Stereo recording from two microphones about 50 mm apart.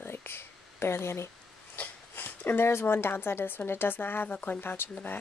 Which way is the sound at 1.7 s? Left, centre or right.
Left.